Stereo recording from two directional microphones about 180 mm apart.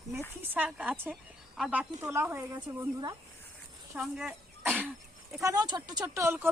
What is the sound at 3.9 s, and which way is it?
Speech, 5° right (ahead or behind).